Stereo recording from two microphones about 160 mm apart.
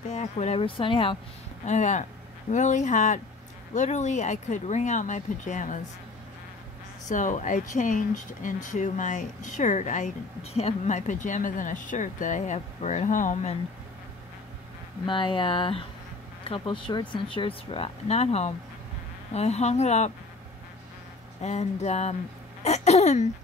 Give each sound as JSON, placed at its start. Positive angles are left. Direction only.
{"t": 0.1, "sound": "speech", "side_deg": 45}
{"t": 1.7, "sound": "speech", "side_deg": 50}
{"t": 7.1, "sound": "speech", "side_deg": 50}
{"t": 15.0, "sound": "speech", "side_deg": 30}
{"t": 21.4, "sound": "speech", "side_deg": 45}